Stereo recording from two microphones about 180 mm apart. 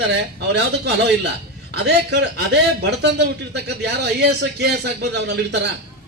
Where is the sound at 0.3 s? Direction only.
70° right (ahead or behind).